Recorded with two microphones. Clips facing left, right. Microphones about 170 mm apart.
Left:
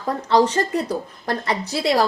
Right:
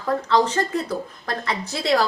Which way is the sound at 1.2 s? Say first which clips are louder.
Left 5 dB; 35° left (ahead or behind).